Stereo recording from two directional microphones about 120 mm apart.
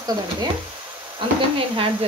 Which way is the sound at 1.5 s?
50° right (ahead or behind).